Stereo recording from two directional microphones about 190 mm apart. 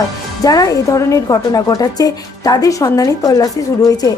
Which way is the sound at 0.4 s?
20° left (ahead or behind).